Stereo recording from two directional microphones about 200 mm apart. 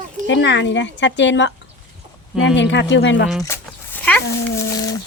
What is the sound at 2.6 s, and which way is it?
Speech, 65° left (ahead or behind).